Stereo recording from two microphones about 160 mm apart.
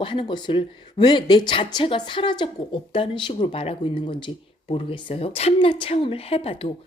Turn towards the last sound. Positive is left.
turn(degrees=35)  # may be behind; listen again after turning